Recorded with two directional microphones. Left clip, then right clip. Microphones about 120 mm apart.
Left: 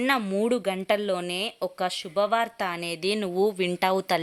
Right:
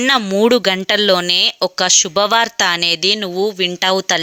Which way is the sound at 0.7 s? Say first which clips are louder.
Right 12 dB; 45° right (ahead or behind).